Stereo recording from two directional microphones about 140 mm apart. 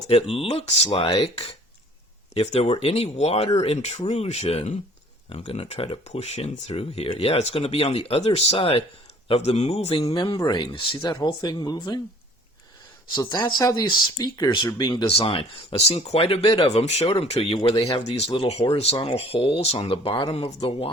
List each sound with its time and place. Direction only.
0.1 s speech: 45° left (ahead or behind)
10.2 s speech: 35° left (ahead or behind)
13.1 s speech: 30° left (ahead or behind)
15.0 s speech: 40° left (ahead or behind)